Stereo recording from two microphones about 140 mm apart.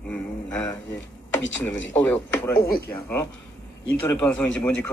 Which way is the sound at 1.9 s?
10° left (ahead or behind).